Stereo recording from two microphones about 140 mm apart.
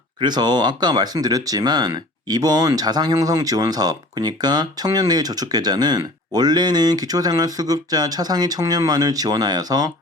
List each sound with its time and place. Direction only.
0.2 s speech: 30° right (ahead or behind)